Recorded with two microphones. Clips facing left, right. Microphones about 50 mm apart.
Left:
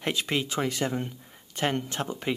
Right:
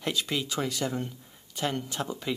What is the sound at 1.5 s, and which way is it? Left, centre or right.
Speech, left.